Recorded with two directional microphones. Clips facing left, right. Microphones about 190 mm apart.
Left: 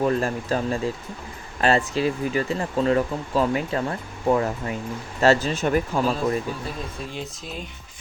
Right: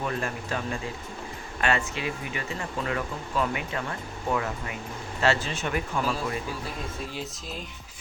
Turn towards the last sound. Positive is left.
turn(degrees=0)  # may be behind; listen again after turning